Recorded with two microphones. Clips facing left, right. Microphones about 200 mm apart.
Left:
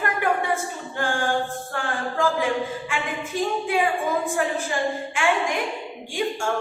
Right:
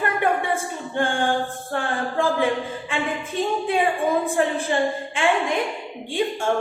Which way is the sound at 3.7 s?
30° right (ahead or behind).